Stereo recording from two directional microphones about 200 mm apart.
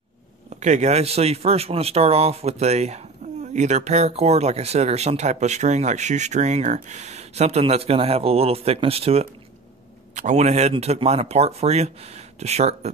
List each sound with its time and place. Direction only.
0.5 s speech: 35° right (ahead or behind)